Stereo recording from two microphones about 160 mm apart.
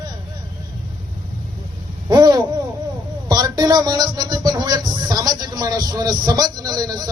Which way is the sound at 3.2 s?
25° right (ahead or behind).